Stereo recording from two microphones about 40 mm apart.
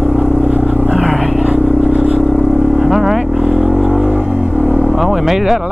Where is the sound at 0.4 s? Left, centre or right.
Right.